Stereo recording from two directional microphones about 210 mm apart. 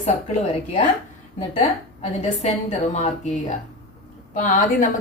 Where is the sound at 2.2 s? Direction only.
30° left (ahead or behind).